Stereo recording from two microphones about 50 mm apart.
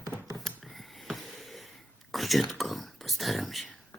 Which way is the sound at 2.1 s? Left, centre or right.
Centre.